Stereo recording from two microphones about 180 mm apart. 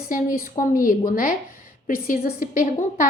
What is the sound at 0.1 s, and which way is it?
A woman's voice, 50° left (ahead or behind).